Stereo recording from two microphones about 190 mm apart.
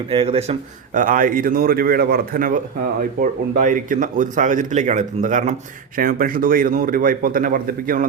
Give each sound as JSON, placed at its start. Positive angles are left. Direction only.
{"t": 0.1, "sound": "a man's voice", "side_deg": -30}
{"t": 0.9, "sound": "a man's voice", "side_deg": -45}